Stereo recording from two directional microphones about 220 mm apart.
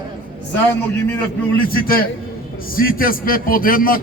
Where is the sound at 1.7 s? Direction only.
40° left (ahead or behind).